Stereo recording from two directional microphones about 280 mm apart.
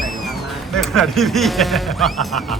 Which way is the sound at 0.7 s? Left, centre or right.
Centre.